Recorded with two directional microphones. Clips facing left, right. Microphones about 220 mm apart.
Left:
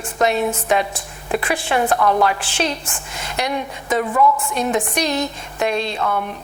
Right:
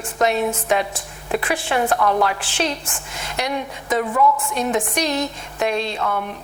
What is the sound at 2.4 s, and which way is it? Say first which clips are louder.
A woman's voice: left 1 dB; 10° left (ahead or behind).